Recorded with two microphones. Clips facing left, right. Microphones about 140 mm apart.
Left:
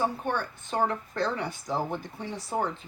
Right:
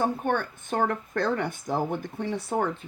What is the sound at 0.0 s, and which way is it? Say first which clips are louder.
Speech: right 3 dB; 55° right (ahead or behind).